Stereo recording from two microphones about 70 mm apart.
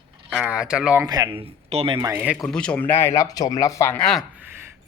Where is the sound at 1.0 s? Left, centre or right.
Right.